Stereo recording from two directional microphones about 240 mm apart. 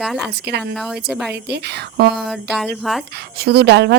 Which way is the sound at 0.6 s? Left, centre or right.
Centre.